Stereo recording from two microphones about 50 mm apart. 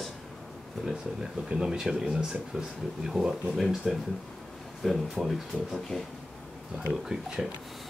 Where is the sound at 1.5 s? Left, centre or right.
Centre.